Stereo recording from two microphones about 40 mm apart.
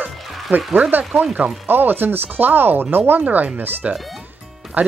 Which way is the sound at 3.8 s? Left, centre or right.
Right.